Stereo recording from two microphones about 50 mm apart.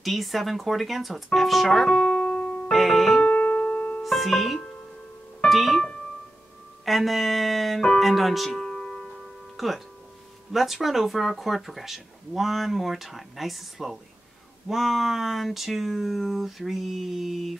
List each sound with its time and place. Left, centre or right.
0.0 s speech: centre
1.9 s keyboard: centre
3.2 s music: left
4.0 s music: centre
5.5 s speech: centre
6.8 s speech: centre
8.5 s music: centre
9.6 s speech: centre